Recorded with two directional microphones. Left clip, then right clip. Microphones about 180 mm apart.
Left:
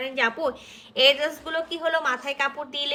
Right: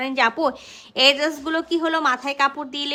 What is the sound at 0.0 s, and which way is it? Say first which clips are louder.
A woman's voice: right 5 dB; 40° right (ahead or behind).